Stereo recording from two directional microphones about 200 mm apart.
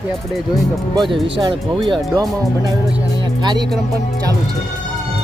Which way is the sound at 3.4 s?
20° right (ahead or behind).